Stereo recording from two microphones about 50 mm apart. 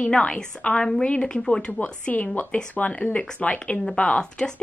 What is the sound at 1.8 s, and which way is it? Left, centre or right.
A woman's voice, left.